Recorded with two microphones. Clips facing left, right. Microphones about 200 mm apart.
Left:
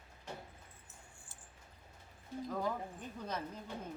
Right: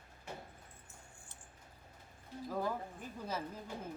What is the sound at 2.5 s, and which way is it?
A woman's voice, 5° right (ahead or behind).